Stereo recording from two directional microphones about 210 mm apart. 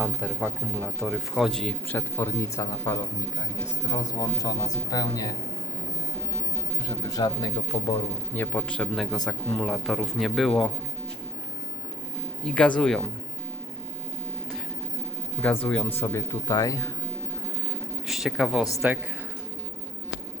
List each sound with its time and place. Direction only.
0.0 s a man's voice: 5° right (ahead or behind); by 5.4 s 15° left (ahead or behind)
6.8 s a man's voice: 20° left (ahead or behind); by 10.7 s centre (ahead or behind)
12.5 s a man's voice: 5° left (ahead or behind)
15.6 s a man's voice: 5° left (ahead or behind)
18.0 s a man's voice: centre (ahead or behind)